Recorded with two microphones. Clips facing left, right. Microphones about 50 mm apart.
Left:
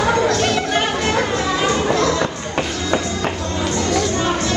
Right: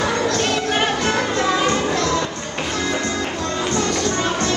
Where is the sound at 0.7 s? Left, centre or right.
Centre.